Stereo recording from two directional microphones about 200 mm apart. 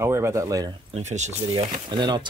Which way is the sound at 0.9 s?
35° right (ahead or behind).